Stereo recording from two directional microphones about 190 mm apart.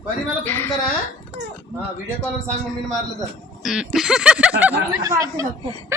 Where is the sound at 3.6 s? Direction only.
Centre (ahead or behind).